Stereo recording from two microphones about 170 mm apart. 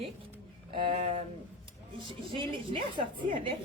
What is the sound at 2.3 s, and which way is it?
Speech, 30° right (ahead or behind).